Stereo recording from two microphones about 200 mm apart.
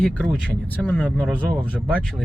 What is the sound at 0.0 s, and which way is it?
Speech, 5° left (ahead or behind).